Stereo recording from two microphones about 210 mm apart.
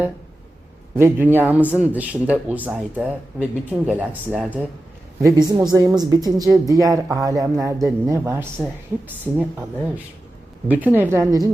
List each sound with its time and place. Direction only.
0.9 s speech: 10° right (ahead or behind)
5.2 s speech: 15° right (ahead or behind)